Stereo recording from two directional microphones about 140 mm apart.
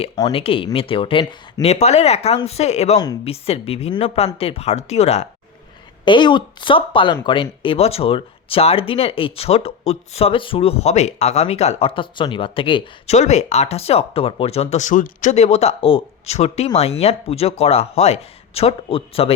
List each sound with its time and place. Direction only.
0.3 s speech: 40° left (ahead or behind)
1.6 s speech: 50° left (ahead or behind)
6.1 s speech: 35° left (ahead or behind)
13.1 s speech: 55° left (ahead or behind)